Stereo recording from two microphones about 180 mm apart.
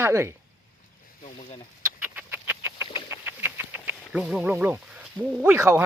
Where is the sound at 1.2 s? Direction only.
40° left (ahead or behind).